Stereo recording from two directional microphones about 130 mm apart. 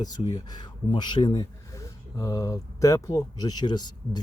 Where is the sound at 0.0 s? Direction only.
30° left (ahead or behind).